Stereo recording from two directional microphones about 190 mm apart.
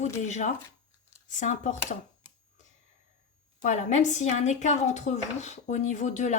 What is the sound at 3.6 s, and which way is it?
Speech, 40° left (ahead or behind).